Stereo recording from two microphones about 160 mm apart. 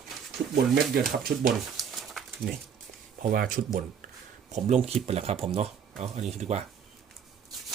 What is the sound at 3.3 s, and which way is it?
Speech, 60° right (ahead or behind).